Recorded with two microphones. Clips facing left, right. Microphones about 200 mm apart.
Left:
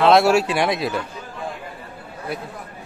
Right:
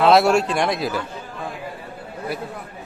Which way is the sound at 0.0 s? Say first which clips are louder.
Even; centre (ahead or behind).